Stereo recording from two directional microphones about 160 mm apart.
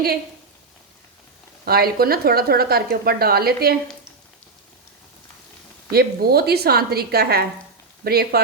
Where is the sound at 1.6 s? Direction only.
70° right (ahead or behind).